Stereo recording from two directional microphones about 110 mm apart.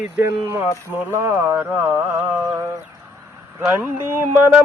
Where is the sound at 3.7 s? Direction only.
20° right (ahead or behind).